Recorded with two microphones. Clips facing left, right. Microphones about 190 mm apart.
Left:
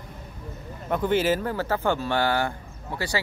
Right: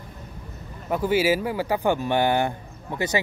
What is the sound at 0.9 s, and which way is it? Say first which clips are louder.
Speech: right 1 dB; 10° right (ahead or behind).